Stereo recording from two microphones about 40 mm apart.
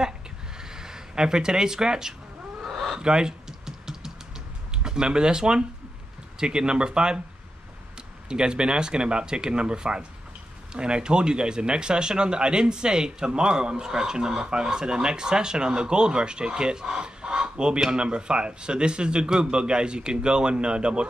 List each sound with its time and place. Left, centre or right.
0.7 s speech: centre
2.6 s chicken: centre
3.0 s typing: right
4.8 s speech: centre
8.3 s speech: right